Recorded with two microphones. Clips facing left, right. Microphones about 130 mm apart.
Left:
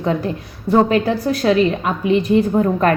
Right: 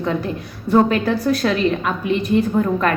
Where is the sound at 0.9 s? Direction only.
30° left (ahead or behind).